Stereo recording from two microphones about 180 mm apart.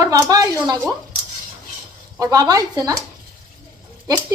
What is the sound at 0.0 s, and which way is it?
Speech, 20° right (ahead or behind).